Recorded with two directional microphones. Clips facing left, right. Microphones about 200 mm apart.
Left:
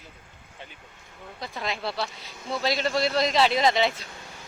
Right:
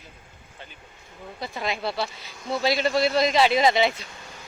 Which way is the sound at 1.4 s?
5° right (ahead or behind).